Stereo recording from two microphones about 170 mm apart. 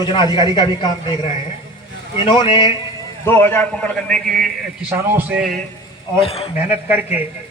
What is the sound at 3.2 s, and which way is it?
A man's voice, 15° left (ahead or behind).